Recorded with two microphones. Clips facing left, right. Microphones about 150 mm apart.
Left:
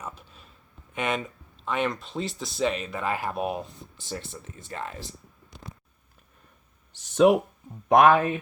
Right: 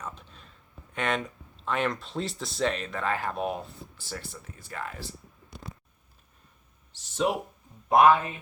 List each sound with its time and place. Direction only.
0.0 s a sound: 5° left (ahead or behind)
0.9 s speech: 5° left (ahead or behind); by 5.0 s 25° left (ahead or behind)
6.9 s speech: 55° left (ahead or behind)
7.9 s speech: 75° left (ahead or behind)